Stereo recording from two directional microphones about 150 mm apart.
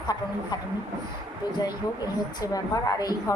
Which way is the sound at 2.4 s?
25° left (ahead or behind).